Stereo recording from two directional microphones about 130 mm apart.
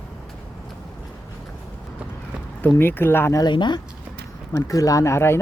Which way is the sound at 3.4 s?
35° left (ahead or behind).